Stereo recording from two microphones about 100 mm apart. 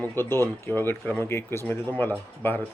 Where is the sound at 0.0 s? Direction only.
20° left (ahead or behind).